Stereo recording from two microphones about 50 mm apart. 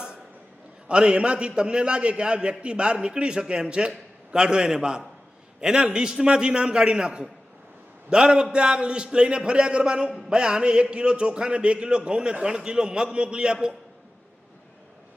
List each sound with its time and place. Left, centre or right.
0.9 s a man's voice: centre